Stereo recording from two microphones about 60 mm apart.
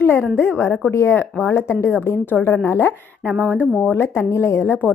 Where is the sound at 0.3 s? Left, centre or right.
Left.